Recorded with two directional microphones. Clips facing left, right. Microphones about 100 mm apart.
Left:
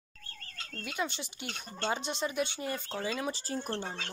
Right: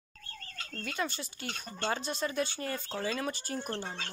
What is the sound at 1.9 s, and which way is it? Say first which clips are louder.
Speech: even; 15° left (ahead or behind).